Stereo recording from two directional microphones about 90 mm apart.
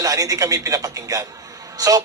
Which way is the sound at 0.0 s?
40° right (ahead or behind).